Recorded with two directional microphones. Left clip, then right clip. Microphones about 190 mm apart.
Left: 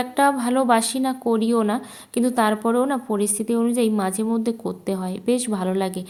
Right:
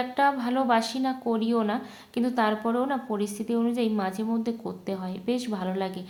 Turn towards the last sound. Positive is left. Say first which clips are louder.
# left 6 dB
turn(degrees=30)  # may be behind; listen again after turning